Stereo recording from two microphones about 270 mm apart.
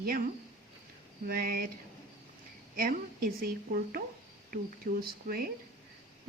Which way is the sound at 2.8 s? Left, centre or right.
Right.